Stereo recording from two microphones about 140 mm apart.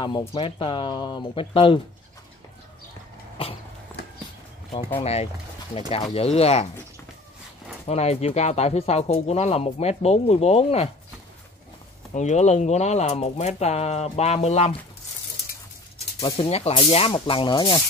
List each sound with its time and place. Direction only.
0.0 s speech: 35° left (ahead or behind)
5.0 s speech: 50° left (ahead or behind)
7.8 s speech: 50° left (ahead or behind)
12.1 s speech: 55° left (ahead or behind)
16.4 s speech: 45° left (ahead or behind)